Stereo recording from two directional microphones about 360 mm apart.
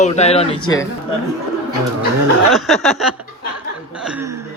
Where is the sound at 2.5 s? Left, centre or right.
Centre.